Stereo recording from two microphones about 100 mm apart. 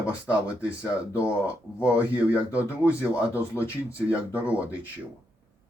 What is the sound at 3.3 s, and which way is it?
Speech, 25° left (ahead or behind).